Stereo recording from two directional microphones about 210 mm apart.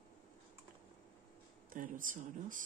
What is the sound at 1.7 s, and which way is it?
Speech, 40° right (ahead or behind).